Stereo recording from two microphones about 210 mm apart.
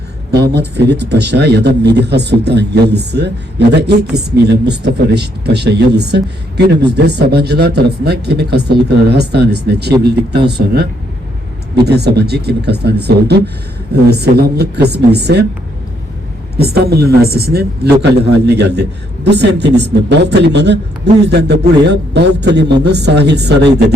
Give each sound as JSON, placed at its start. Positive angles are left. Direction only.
{"t": 0.3, "sound": "speech", "side_deg": -50}
{"t": 16.6, "sound": "a man's voice", "side_deg": -50}